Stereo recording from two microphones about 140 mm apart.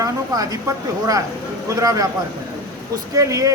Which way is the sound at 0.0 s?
25° right (ahead or behind).